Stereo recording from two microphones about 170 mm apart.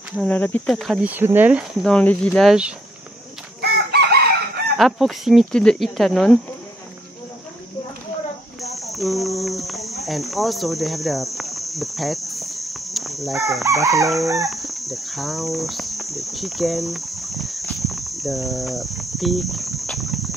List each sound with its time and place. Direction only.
0.2 s speech: 10° left (ahead or behind)
1.1 s speech: 10° right (ahead or behind)
1.8 s speech: 5° left (ahead or behind)
2.4 s speech: 5° right (ahead or behind)
3.7 s chicken: 70° right (ahead or behind)
4.7 s speech: centre (ahead or behind)
8.7 s cricket: centre (ahead or behind)
10.0 s speech: centre (ahead or behind)
13.7 s chicken: 20° right (ahead or behind)
14.4 s cricket: centre (ahead or behind)